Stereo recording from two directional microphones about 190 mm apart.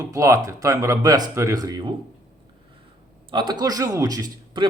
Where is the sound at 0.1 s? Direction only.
15° right (ahead or behind).